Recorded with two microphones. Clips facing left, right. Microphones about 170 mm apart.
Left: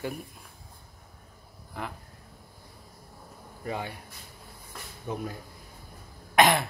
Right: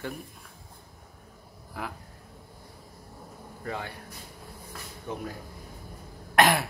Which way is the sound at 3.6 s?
15° left (ahead or behind).